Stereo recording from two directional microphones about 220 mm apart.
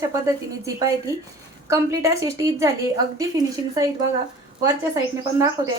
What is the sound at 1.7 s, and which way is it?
A woman's voice, 15° right (ahead or behind).